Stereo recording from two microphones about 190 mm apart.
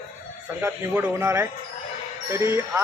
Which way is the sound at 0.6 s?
10° right (ahead or behind).